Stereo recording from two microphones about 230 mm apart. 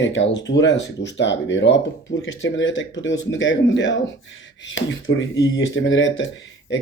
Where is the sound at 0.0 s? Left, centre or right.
Left.